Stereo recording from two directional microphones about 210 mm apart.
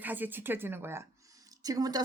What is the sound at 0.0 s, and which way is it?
A woman's voice, 10° right (ahead or behind).